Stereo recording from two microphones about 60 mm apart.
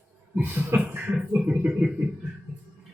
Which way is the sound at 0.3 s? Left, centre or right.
Right.